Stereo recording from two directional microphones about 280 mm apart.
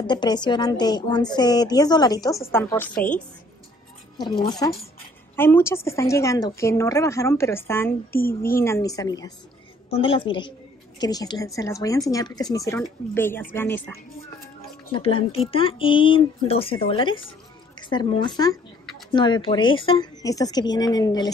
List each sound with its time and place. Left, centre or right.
0.0 s a woman's voice: centre
4.2 s a woman's voice: centre
14.9 s a woman's voice: centre